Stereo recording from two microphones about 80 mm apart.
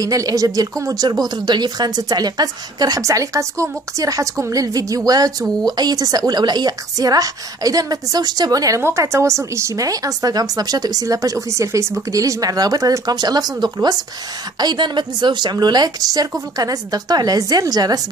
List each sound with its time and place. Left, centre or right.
0.0 s a woman's voice: right
3.0 s speech: right
8.8 s speech: right
14.6 s a woman's voice: right